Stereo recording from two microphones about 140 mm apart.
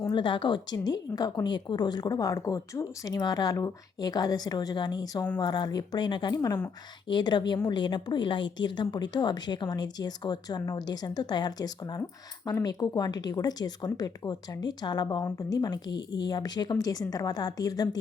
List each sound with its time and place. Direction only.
0.1 s a woman's voice: 35° left (ahead or behind)